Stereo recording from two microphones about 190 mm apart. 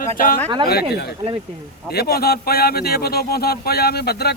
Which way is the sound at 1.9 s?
55° left (ahead or behind).